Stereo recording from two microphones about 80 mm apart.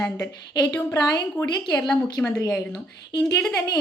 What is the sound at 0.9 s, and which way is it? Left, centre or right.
A woman's voice, left.